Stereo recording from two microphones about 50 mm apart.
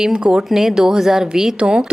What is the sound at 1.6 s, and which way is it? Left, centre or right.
Speech, right.